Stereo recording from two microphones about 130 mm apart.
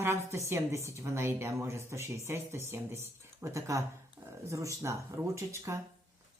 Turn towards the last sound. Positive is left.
turn(degrees=-25)  # may be behind; listen again after turning